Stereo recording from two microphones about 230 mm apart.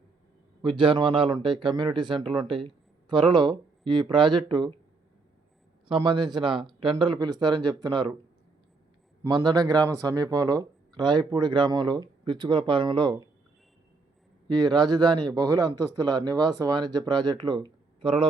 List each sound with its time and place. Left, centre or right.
0.6 s speech: right
5.9 s speech: centre
9.2 s speech: centre
14.6 s speech: centre